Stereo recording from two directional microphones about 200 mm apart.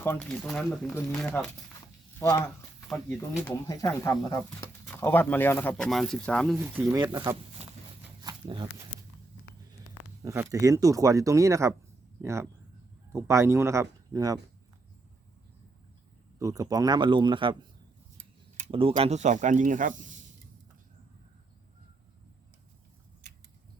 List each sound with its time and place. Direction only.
0.0 s speech: 10° left (ahead or behind)
2.1 s speech: 15° left (ahead or behind)
3.4 s speech: 15° left (ahead or behind)
6.6 s speech: 10° right (ahead or behind)
7.0 s speech: 20° right (ahead or behind)
8.2 s a sound: 20° right (ahead or behind)
10.2 s speech: 15° right (ahead or behind)
16.4 s speech: 15° right (ahead or behind)
18.7 s speech: 25° right (ahead or behind)